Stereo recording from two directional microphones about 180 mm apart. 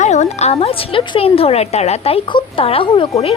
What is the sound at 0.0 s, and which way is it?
A woman's voice, 40° left (ahead or behind).